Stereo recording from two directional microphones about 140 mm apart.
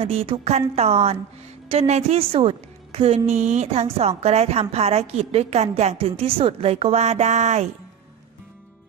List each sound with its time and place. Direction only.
0.0 s a woman's voice: 45° right (ahead or behind)